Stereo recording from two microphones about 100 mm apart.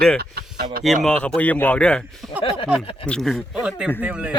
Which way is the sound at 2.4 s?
60° left (ahead or behind).